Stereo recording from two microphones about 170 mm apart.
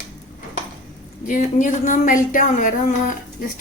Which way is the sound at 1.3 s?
50° left (ahead or behind).